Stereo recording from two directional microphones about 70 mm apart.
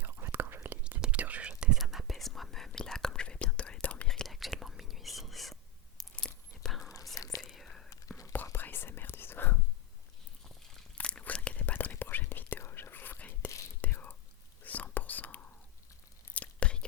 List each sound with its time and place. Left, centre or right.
0.0 s whispering: right
0.9 s whispering: right
1.8 s whispering: centre
4.1 s whispering: centre
6.1 s a sound: centre
6.9 s whispering: left
7.4 s whispering: centre
7.9 s whispering: left
8.5 s whispering: left
10.9 s whispering: centre
16.3 s a sound: centre